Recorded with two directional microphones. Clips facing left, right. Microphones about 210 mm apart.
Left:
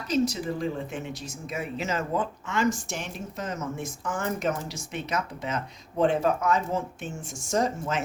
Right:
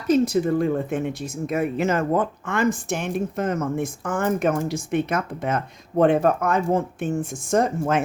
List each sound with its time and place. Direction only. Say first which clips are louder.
0.1 s speech: right 7 dB; 55° right (ahead or behind)